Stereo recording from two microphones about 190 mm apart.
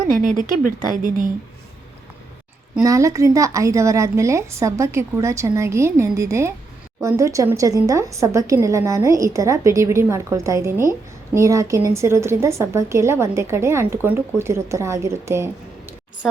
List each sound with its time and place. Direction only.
0.2 s a woman's voice: 45° right (ahead or behind)
2.8 s a woman's voice: 15° right (ahead or behind)